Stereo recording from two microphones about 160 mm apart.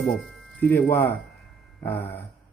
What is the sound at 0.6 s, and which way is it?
Speech, 15° left (ahead or behind).